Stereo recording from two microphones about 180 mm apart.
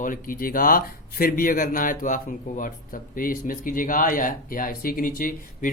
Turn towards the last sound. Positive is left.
turn(degrees=50)  # may be behind; listen again after turning